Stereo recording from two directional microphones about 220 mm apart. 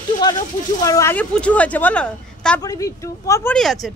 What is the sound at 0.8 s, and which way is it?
A woman's voice, 15° left (ahead or behind).